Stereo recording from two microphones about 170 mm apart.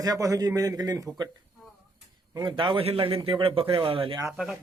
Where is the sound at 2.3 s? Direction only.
25° right (ahead or behind).